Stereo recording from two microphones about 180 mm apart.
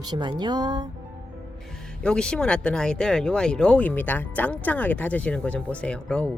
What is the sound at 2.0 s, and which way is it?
Speech, 5° left (ahead or behind).